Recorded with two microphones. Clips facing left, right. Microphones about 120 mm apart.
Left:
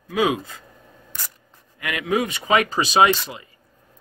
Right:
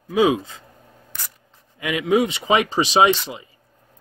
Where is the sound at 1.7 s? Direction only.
25° right (ahead or behind).